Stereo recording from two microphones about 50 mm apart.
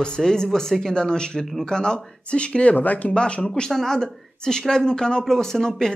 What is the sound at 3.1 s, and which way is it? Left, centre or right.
Speech, left.